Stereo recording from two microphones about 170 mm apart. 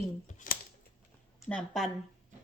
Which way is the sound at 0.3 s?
45° left (ahead or behind).